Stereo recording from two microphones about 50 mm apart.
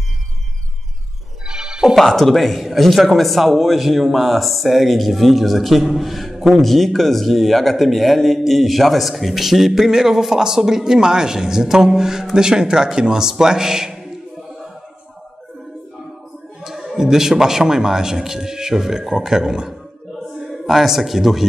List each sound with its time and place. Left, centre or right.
1.5 s music: centre
2.0 s a man's voice: centre
16.6 s a man's voice: centre